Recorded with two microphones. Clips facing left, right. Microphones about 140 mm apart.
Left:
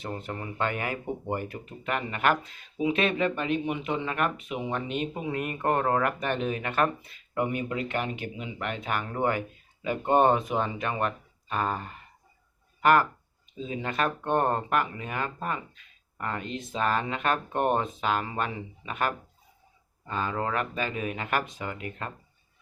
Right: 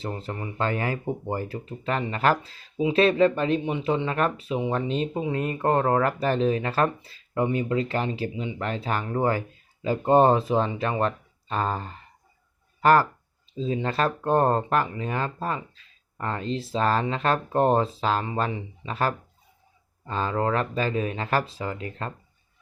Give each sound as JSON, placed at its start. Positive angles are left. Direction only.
{"t": 0.0, "sound": "speech", "side_deg": -30}